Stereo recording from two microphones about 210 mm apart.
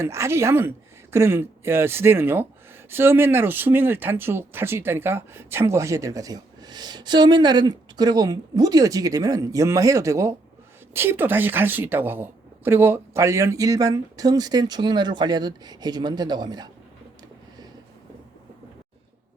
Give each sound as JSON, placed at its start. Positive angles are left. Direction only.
{"t": 0.0, "sound": "speech", "side_deg": -10}